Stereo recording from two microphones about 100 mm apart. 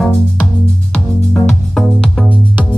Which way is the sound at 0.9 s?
10° left (ahead or behind).